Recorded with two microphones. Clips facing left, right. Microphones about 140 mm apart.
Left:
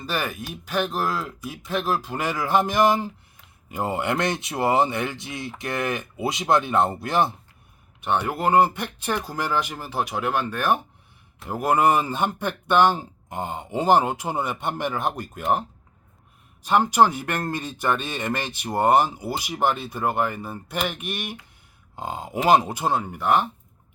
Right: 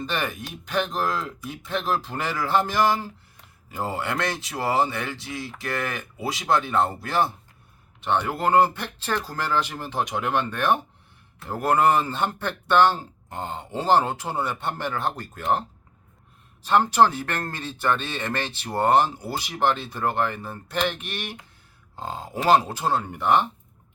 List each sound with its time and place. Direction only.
0.0 s speech: 5° left (ahead or behind)
16.6 s speech: 15° left (ahead or behind)